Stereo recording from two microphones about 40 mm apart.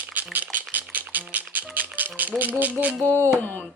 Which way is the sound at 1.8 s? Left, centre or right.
Right.